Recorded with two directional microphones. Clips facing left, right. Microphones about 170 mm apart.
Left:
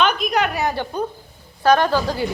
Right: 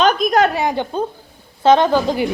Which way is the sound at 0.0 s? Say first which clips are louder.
Right 5 dB; 40° right (ahead or behind).